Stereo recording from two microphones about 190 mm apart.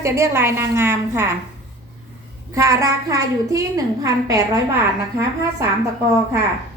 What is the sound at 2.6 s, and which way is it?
A woman's voice, 15° right (ahead or behind).